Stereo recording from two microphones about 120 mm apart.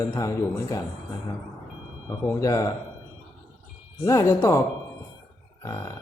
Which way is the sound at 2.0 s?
30° left (ahead or behind).